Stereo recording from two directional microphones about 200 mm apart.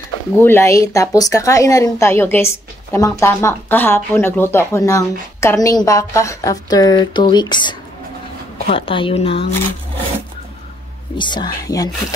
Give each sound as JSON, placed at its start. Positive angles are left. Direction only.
{"t": 0.4, "sound": "a woman's voice", "side_deg": 10}
{"t": 11.1, "sound": "speech", "side_deg": 25}